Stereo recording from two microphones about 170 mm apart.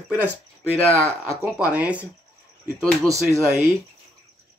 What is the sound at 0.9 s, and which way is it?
Speech, 15° right (ahead or behind).